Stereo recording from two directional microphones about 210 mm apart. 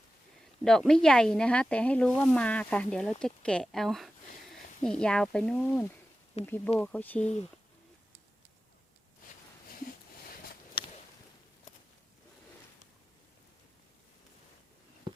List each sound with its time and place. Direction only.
0.6 s speech: centre (ahead or behind)
6.4 s speech: 30° left (ahead or behind)
6.7 s speech: 5° left (ahead or behind)
7.2 s speech: 35° left (ahead or behind)
10.2 s a sound: 45° left (ahead or behind)